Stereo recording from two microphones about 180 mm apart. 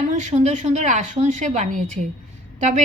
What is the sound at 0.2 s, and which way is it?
A woman's voice, 40° right (ahead or behind).